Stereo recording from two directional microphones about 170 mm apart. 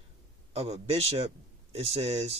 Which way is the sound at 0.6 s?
35° right (ahead or behind).